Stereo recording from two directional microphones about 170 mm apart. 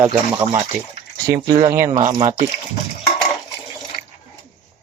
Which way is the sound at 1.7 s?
55° right (ahead or behind).